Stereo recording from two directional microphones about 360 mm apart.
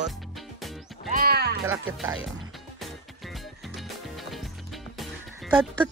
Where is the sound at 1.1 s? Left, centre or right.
Right.